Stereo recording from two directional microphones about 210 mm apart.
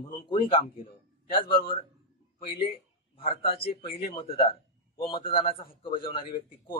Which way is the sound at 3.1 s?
25° left (ahead or behind).